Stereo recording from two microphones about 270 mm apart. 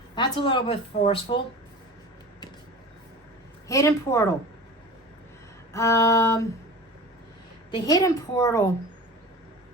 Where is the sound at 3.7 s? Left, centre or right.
Centre.